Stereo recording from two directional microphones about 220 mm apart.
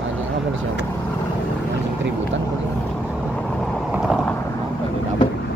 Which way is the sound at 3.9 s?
Centre (ahead or behind).